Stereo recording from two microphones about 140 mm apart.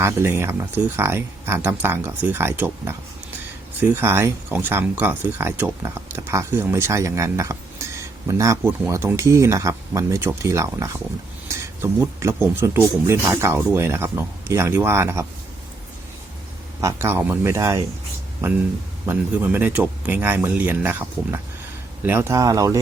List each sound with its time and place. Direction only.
0.0 s speech: 15° right (ahead or behind)
16.8 s speech: 15° right (ahead or behind)
19.0 s speech: 15° right (ahead or behind)